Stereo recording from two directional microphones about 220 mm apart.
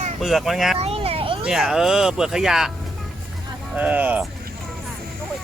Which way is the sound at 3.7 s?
5° right (ahead or behind).